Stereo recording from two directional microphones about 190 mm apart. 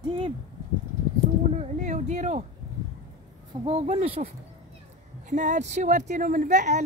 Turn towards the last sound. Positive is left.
turn(degrees=-40)  # may be behind; listen again after turning